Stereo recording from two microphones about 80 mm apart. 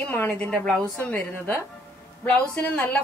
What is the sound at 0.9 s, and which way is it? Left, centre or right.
Speech, left.